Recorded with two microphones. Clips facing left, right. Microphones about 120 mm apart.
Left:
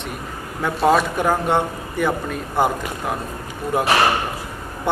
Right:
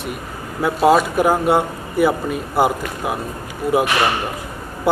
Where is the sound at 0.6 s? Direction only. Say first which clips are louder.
Right 3 dB; 5° right (ahead or behind).